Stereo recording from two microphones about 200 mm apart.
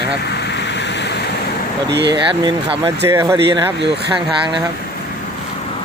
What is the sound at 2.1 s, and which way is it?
Speech, 20° right (ahead or behind).